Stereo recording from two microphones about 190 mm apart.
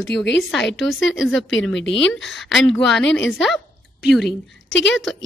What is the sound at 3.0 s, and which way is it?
A woman's voice, 75° left (ahead or behind).